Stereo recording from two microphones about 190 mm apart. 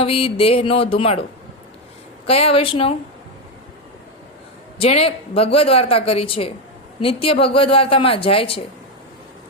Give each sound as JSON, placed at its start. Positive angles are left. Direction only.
{"t": 0.0, "sound": "speech", "side_deg": 30}
{"t": 2.2, "sound": "speech", "side_deg": 30}
{"t": 4.8, "sound": "speech", "side_deg": 30}